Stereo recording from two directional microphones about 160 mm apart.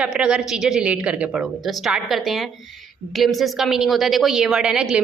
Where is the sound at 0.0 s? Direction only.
5° right (ahead or behind).